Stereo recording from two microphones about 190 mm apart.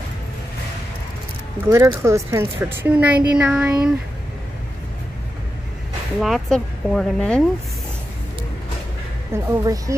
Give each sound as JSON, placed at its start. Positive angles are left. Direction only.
{"t": 1.7, "sound": "speech", "side_deg": -15}
{"t": 6.1, "sound": "speech", "side_deg": 0}
{"t": 9.3, "sound": "speech", "side_deg": -15}